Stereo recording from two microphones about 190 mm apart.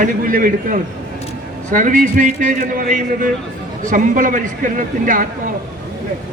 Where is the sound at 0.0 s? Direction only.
45° right (ahead or behind).